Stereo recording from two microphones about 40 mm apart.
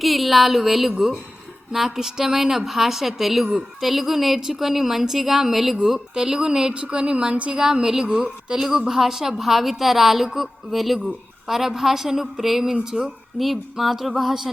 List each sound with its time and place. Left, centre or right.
0.0 s a woman's voice: centre
6.8 s a woman's voice: right
7.6 s a woman's voice: centre
8.6 s a woman's voice: centre
12.8 s a woman's voice: centre
13.4 s a woman's voice: centre